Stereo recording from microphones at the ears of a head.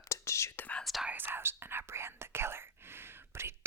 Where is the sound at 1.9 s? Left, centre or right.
Right.